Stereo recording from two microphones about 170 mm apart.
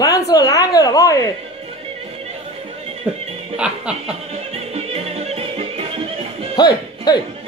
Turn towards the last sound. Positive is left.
turn(degrees=25)  # may be behind; listen again after turning